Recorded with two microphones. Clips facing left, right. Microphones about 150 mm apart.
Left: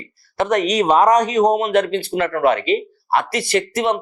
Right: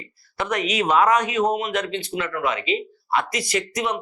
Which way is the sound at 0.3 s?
45° left (ahead or behind).